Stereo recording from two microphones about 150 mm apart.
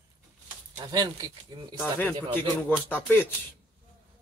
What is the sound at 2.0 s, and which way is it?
Speech, 15° left (ahead or behind).